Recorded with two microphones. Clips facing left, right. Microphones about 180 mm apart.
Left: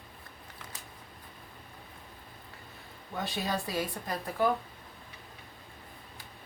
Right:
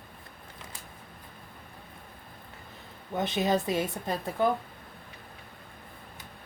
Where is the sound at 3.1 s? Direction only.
20° right (ahead or behind).